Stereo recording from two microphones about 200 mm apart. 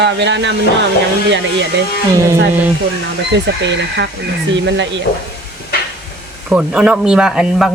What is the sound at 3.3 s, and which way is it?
Speech, 60° right (ahead or behind).